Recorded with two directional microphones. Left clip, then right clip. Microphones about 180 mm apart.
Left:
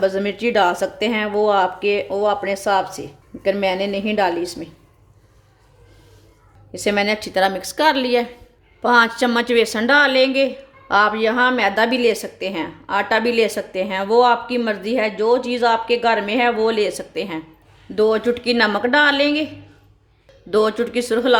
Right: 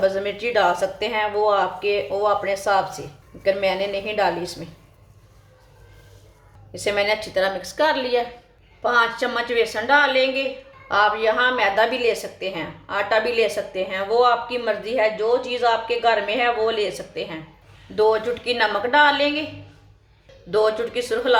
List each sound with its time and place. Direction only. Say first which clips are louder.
0.0 s a woman's voice: left 2 dB; 55° left (ahead or behind)
6.7 s speech: left 2 dB; 55° left (ahead or behind)
20.5 s speech: left 2 dB; 60° left (ahead or behind)